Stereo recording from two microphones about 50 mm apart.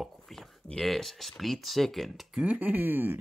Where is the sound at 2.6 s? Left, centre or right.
Right.